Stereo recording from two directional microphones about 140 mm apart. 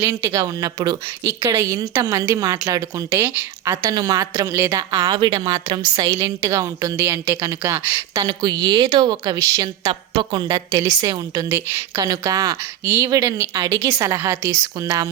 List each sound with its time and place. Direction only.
0.0 s a woman's voice: 20° right (ahead or behind)
3.2 s a woman's voice: 15° right (ahead or behind)
3.8 s a woman's voice: 25° right (ahead or behind)
8.3 s a woman's voice: 30° right (ahead or behind)